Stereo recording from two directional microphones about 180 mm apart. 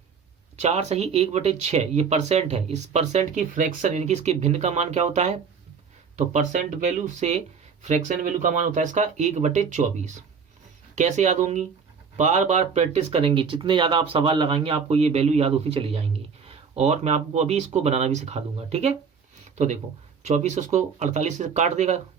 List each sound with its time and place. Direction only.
0.5 s speech: 40° right (ahead or behind)